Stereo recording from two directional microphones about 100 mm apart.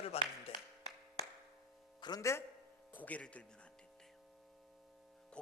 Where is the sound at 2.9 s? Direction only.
15° left (ahead or behind).